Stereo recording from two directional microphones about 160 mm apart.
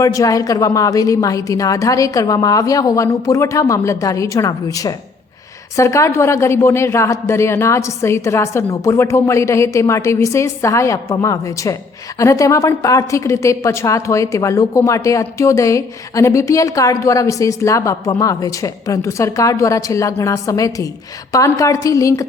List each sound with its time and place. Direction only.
0.0 s a woman's voice: 20° left (ahead or behind)